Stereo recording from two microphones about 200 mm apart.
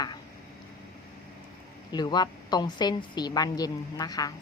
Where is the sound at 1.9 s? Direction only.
20° left (ahead or behind).